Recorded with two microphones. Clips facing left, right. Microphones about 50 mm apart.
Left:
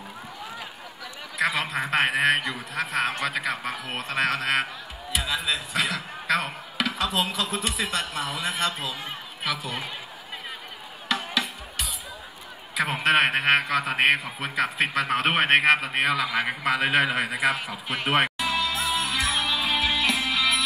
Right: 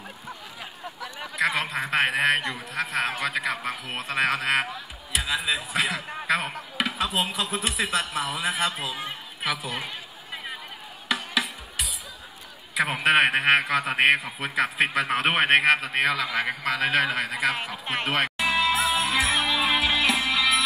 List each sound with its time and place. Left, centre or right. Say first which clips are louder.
1.5 s a man's voice: even; centre
11.1 s music: even; centre
12.7 s a man's voice: right 1 dB; centre
18.4 s music: right 3 dB; centre
19.3 s music: right 2 dB; right
19.8 s music: right 1 dB; centre